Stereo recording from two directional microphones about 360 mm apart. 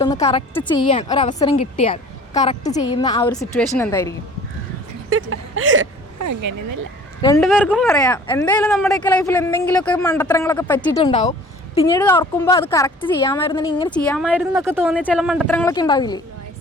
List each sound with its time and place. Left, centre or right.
0.0 s a woman's voice: centre
0.9 s a woman's voice: centre
5.0 s speech: right
6.1 s speech: right
7.2 s speech: centre
7.4 s a woman's voice: centre